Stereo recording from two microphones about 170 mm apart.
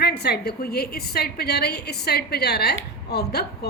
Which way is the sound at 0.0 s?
70° left (ahead or behind).